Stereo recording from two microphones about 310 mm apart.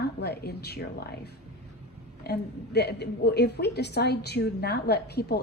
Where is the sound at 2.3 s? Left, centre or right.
Left.